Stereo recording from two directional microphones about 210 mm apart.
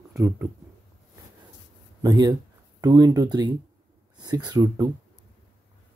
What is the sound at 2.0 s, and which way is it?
Speech, 20° right (ahead or behind).